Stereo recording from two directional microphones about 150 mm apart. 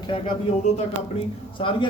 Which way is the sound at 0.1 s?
40° left (ahead or behind).